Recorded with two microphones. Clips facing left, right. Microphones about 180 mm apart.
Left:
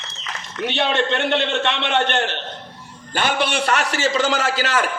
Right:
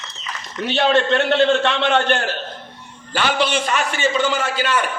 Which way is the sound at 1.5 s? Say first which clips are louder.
Right 5 dB; 65° left (ahead or behind).